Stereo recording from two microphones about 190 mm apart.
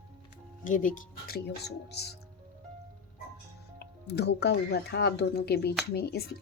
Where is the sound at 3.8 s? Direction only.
60° left (ahead or behind).